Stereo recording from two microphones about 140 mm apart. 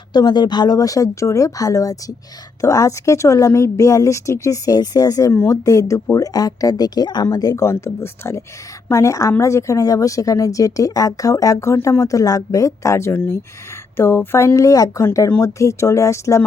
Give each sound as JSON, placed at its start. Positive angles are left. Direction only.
{"t": 0.1, "sound": "speech", "side_deg": 30}